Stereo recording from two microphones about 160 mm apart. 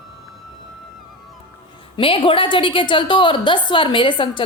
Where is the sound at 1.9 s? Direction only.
35° left (ahead or behind).